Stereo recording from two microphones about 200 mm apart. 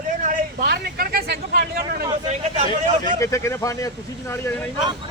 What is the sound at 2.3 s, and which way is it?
Speech, 35° right (ahead or behind).